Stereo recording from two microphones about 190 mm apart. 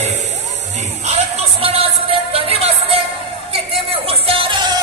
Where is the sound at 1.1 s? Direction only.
30° right (ahead or behind).